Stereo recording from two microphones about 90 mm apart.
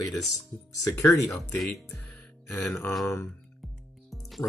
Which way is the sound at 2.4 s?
20° left (ahead or behind).